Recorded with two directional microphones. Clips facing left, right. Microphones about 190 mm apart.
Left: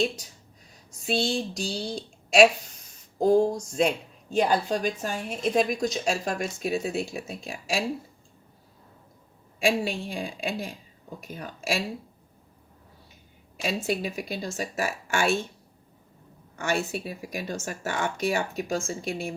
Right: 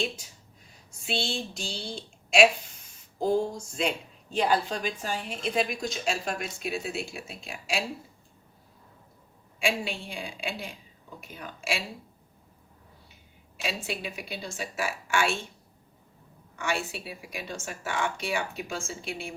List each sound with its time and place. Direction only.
1.0 s speech: 40° left (ahead or behind)
9.6 s speech: 40° left (ahead or behind)
13.6 s speech: 45° left (ahead or behind)
16.6 s speech: 40° left (ahead or behind)